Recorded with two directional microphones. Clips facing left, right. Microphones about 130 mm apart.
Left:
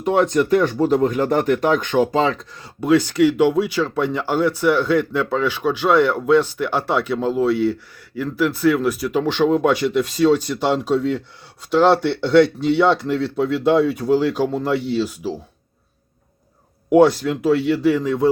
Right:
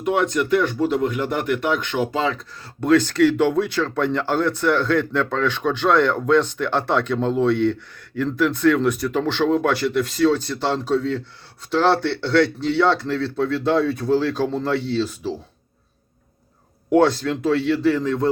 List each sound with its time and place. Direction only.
0.0 s speech: 35° left (ahead or behind)
2.8 s speech: 10° left (ahead or behind)
16.9 s speech: 10° left (ahead or behind)